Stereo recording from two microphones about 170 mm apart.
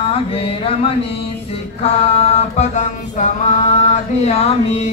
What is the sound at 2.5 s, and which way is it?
Music, 45° left (ahead or behind).